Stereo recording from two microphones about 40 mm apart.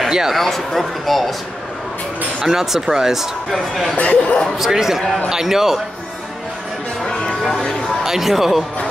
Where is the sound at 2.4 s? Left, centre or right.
Centre.